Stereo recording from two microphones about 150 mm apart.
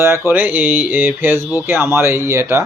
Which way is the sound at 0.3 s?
15° right (ahead or behind).